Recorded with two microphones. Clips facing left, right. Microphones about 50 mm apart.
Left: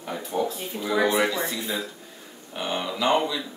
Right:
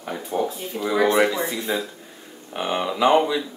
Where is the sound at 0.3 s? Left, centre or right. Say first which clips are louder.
Right 2 dB; centre.